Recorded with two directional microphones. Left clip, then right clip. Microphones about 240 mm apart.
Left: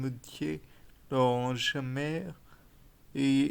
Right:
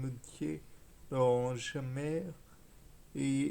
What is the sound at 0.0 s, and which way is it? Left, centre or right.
Speech, left.